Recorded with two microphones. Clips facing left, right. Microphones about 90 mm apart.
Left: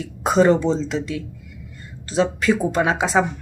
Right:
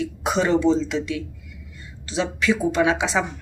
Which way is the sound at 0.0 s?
40° left (ahead or behind).